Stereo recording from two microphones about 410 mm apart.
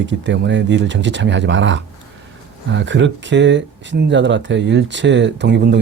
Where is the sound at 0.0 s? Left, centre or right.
Right.